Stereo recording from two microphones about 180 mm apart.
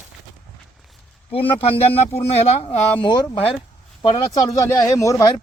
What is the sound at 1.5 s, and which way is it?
Speech, 30° left (ahead or behind).